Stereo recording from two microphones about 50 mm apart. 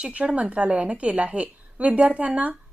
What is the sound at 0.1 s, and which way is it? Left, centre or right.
A woman's voice, right.